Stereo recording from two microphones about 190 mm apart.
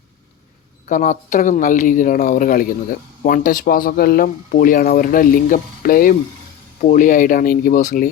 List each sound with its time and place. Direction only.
0.9 s speech: 40° left (ahead or behind)